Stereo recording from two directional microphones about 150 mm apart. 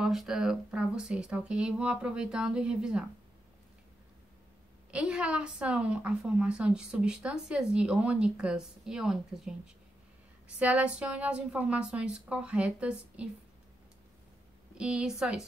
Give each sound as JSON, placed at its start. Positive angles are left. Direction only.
{"t": 0.0, "sound": "speech", "side_deg": 0}
{"t": 4.9, "sound": "a woman's voice", "side_deg": -5}
{"t": 10.6, "sound": "a woman's voice", "side_deg": -10}
{"t": 14.8, "sound": "speech", "side_deg": -5}